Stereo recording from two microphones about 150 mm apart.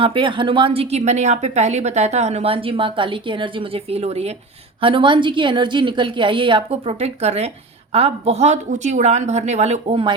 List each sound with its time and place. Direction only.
0.0 s a woman's voice: 35° right (ahead or behind)